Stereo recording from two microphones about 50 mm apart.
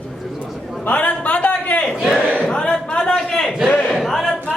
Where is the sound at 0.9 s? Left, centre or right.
Left.